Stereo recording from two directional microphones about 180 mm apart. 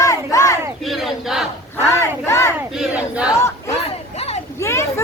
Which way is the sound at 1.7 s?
15° left (ahead or behind).